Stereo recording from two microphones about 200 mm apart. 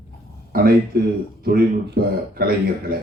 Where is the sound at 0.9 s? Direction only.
50° right (ahead or behind).